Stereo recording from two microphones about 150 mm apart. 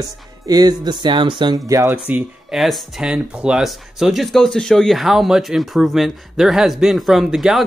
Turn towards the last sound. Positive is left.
turn(degrees=0)  # may be behind; listen again after turning